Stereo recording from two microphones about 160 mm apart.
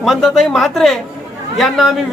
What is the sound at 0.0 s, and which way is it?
Speech, centre (ahead or behind).